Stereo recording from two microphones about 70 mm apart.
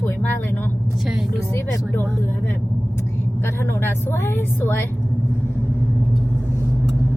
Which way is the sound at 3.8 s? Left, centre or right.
Left.